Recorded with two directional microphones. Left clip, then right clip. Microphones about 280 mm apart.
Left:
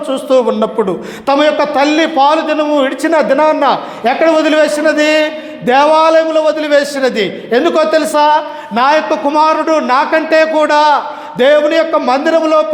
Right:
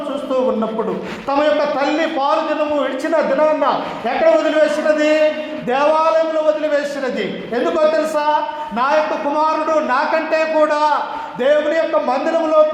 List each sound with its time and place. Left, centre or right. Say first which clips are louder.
1.3 s a man's voice: left 5 dB; left